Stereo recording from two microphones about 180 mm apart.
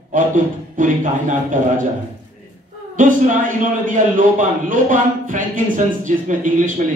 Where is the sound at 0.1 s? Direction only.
45° right (ahead or behind).